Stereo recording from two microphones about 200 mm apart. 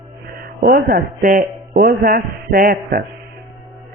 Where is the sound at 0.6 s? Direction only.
50° right (ahead or behind).